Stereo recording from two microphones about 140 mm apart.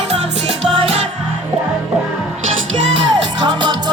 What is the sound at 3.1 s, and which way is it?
Music, 30° right (ahead or behind).